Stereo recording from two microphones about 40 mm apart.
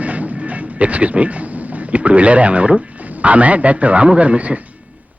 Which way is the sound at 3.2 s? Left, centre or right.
Right.